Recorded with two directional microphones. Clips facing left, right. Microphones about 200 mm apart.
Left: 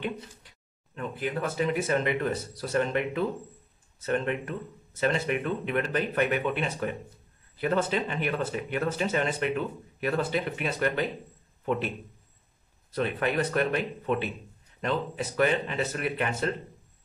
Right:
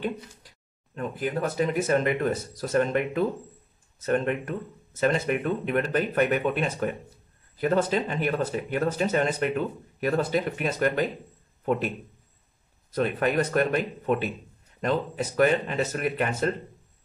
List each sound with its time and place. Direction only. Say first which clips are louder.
0.9 s speech: right 3 dB; 40° right (ahead or behind)
12.9 s speech: right 3 dB; 45° right (ahead or behind)